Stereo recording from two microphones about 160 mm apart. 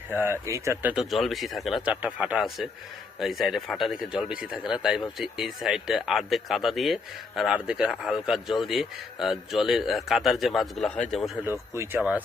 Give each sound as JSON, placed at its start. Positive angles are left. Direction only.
{"t": 0.1, "sound": "speech", "side_deg": -15}
{"t": 11.7, "sound": "speech", "side_deg": -15}